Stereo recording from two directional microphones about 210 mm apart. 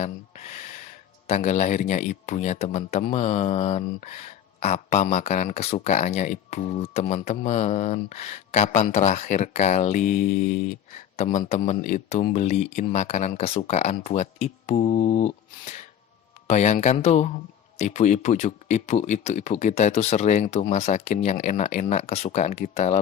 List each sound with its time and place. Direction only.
0.0 s speech: 30° left (ahead or behind)